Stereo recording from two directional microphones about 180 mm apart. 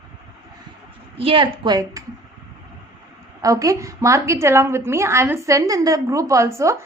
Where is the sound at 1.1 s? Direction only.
30° right (ahead or behind).